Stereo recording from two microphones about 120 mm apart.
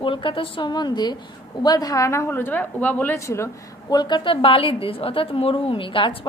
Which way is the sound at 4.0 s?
40° left (ahead or behind).